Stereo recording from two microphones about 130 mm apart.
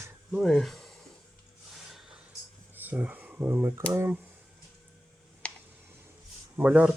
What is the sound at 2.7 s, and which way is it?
Speech, 15° right (ahead or behind).